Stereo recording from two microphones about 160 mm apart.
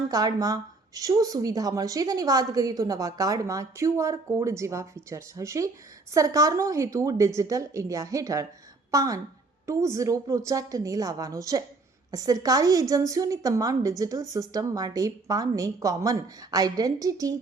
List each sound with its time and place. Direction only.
0.1 s speech: 25° right (ahead or behind)